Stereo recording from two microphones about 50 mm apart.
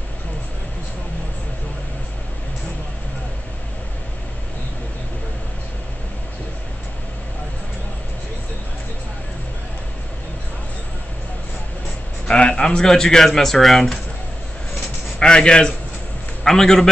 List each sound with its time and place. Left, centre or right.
12.3 s speech: centre
15.1 s speech: centre